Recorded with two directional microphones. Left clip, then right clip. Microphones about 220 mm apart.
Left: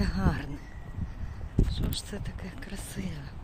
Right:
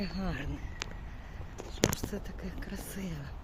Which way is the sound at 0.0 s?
20° left (ahead or behind).